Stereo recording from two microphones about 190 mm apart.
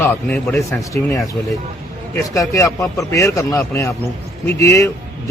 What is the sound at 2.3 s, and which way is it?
A man's voice, 15° left (ahead or behind).